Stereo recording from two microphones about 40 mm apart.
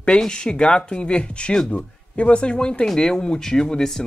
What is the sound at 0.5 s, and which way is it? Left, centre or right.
Speech, left.